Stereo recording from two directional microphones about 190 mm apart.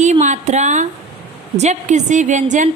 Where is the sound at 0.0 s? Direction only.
40° right (ahead or behind).